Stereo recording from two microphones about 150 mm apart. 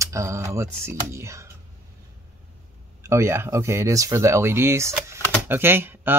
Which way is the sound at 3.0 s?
20° right (ahead or behind).